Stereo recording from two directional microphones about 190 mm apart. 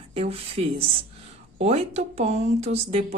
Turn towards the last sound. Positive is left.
turn(degrees=-30)  # may be behind; listen again after turning